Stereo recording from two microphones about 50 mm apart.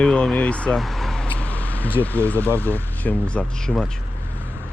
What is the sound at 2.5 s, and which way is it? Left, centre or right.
Speech, left.